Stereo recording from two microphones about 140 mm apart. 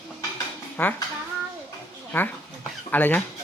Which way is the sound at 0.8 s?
15° left (ahead or behind).